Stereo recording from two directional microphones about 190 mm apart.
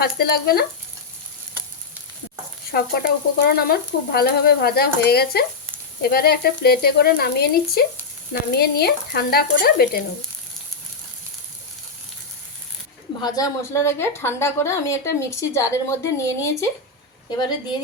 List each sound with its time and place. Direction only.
0.0 s frying: 55° left (ahead or behind)
2.7 s frying: 55° left (ahead or behind)
13.2 s a woman's voice: 20° left (ahead or behind)